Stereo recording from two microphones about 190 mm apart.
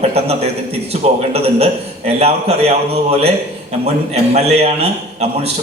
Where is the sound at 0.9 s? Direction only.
35° right (ahead or behind).